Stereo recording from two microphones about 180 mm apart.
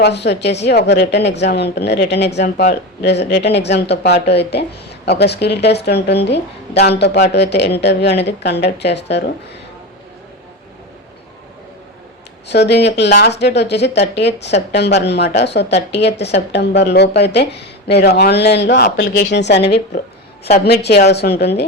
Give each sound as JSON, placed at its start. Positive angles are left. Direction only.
{"t": 0.0, "sound": "speech", "side_deg": 70}
{"t": 2.4, "sound": "speech", "side_deg": 40}
{"t": 3.0, "sound": "speech", "side_deg": 70}
{"t": 12.5, "sound": "speech", "side_deg": 70}